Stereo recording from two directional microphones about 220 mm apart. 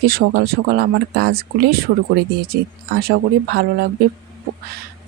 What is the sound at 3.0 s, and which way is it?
Speech, 45° right (ahead or behind).